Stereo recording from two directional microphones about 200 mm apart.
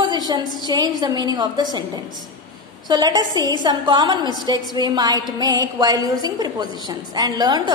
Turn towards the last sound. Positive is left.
turn(degrees=-20)  # may be behind; listen again after turning